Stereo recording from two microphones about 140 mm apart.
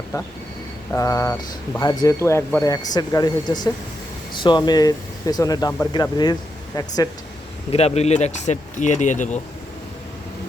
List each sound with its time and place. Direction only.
0.9 s speech: 20° left (ahead or behind)
7.7 s speech: 50° left (ahead or behind)